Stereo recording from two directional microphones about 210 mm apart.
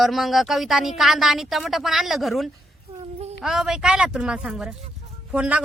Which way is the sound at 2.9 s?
30° right (ahead or behind).